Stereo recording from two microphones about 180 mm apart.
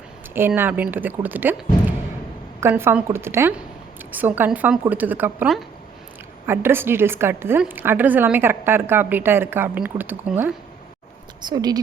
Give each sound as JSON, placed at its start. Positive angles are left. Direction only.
{"t": 0.3, "sound": "a woman's voice", "side_deg": -10}
{"t": 2.6, "sound": "a woman's voice", "side_deg": -15}
{"t": 11.4, "sound": "a woman's voice", "side_deg": -20}